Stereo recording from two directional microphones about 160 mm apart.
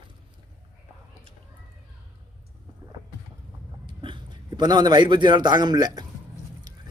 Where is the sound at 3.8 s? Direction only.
30° right (ahead or behind).